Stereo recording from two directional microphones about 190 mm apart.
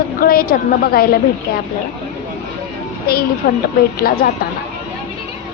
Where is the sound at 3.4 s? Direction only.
55° left (ahead or behind).